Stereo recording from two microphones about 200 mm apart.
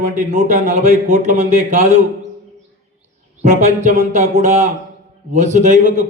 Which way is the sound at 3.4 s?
35° right (ahead or behind).